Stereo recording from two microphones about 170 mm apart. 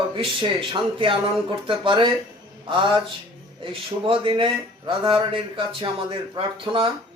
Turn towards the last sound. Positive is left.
turn(degrees=-30)  # may be behind; listen again after turning